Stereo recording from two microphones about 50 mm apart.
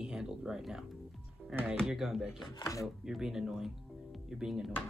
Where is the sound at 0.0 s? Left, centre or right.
Centre.